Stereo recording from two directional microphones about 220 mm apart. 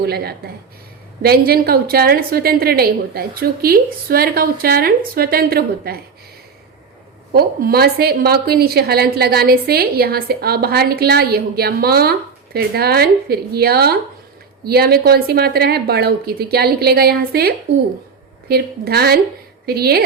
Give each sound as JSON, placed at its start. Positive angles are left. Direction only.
{"t": 0.0, "sound": "a woman's voice", "side_deg": -45}
{"t": 7.3, "sound": "a woman's voice", "side_deg": -45}